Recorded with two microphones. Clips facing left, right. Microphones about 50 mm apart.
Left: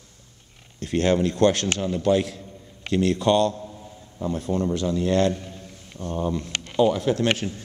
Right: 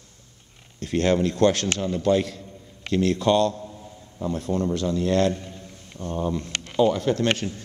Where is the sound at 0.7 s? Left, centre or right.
Centre.